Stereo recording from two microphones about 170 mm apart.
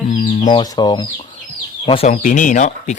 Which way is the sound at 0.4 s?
25° left (ahead or behind).